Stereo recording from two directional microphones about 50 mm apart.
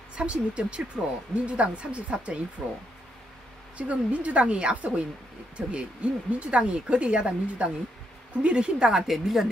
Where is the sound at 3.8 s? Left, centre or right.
Right.